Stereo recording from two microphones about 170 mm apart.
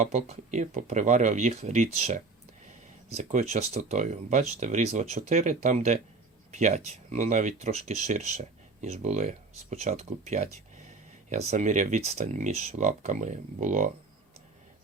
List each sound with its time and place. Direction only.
0.0 s speech: 45° right (ahead or behind)